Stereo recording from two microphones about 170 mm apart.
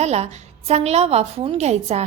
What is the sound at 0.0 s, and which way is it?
A woman's voice, 40° right (ahead or behind).